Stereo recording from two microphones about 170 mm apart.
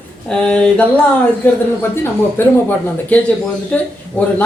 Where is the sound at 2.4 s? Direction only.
15° left (ahead or behind).